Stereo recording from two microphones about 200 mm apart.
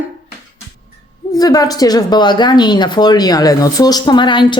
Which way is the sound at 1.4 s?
20° left (ahead or behind).